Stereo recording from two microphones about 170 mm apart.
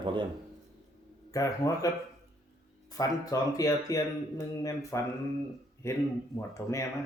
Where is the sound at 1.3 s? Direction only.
20° left (ahead or behind).